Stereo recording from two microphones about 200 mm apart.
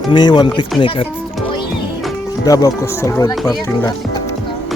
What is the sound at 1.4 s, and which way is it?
Music, 25° left (ahead or behind).